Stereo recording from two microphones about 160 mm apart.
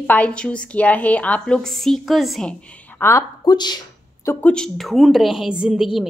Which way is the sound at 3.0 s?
20° left (ahead or behind).